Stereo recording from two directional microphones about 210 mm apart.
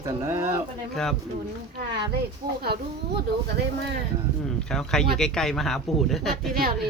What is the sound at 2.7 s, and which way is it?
Speech, 50° right (ahead or behind).